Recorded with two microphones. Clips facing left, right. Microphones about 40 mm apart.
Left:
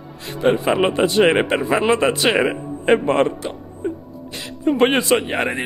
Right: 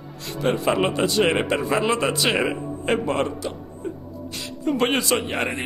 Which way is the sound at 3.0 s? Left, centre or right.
Left.